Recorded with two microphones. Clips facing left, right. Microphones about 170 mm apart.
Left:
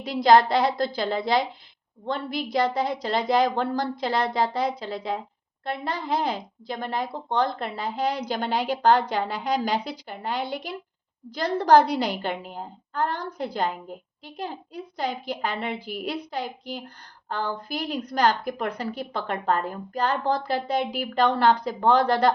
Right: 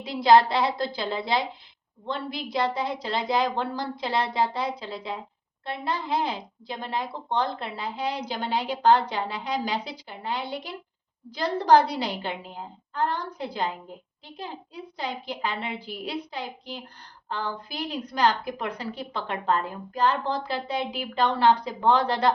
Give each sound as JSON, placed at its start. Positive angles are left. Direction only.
{"t": 0.0, "sound": "a woman's voice", "side_deg": 45}